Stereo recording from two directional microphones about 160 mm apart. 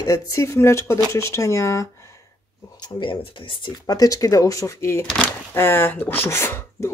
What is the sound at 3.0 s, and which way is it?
Speech, 30° left (ahead or behind).